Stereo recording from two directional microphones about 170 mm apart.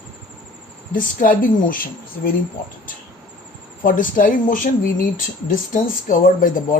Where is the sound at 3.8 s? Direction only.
55° left (ahead or behind).